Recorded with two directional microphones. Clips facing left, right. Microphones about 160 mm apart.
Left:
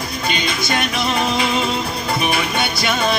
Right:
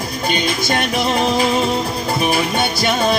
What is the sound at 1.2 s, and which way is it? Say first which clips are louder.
Music: right 3 dB; 40° right (ahead or behind).